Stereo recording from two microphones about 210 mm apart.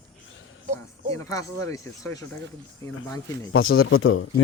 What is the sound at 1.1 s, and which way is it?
Speech, 15° left (ahead or behind).